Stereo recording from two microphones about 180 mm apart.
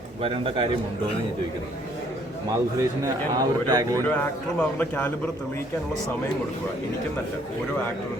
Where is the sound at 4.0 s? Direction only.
10° left (ahead or behind).